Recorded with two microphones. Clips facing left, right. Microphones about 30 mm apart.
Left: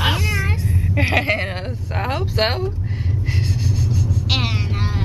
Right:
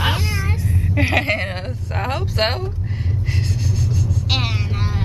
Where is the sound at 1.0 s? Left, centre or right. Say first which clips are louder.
Even; centre.